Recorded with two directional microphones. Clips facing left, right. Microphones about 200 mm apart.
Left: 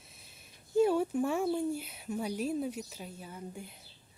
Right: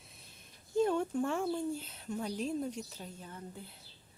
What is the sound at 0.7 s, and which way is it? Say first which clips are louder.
Speech: left 3 dB; 10° left (ahead or behind).